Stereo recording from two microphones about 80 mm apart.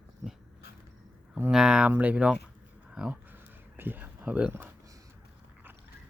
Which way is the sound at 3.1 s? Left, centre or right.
Right.